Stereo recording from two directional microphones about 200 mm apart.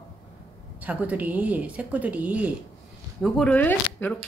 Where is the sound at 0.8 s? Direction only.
10° right (ahead or behind).